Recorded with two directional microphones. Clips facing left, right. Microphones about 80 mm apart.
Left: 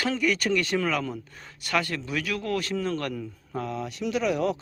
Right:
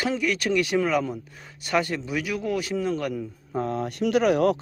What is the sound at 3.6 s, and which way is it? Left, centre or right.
Speech, right.